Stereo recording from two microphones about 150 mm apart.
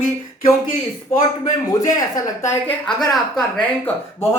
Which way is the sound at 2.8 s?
Centre (ahead or behind).